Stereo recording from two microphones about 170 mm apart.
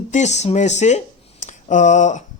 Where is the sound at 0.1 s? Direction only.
40° left (ahead or behind).